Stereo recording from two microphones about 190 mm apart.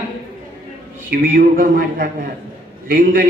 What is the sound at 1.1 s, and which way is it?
A man's voice, 45° right (ahead or behind).